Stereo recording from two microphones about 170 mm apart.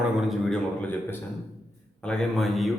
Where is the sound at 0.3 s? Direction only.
5° left (ahead or behind).